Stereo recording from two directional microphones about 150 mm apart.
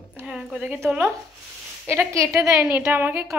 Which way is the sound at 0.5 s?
15° right (ahead or behind).